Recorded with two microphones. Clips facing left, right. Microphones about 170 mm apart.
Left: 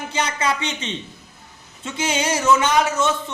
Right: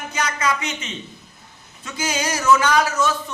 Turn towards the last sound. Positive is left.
turn(degrees=25)  # may be behind; listen again after turning